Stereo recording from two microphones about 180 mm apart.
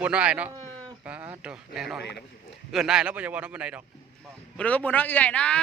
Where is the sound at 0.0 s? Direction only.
5° right (ahead or behind).